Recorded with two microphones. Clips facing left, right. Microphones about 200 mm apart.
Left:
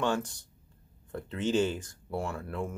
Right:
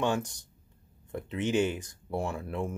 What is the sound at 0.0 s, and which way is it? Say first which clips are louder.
Speech: right 1 dB; 15° right (ahead or behind).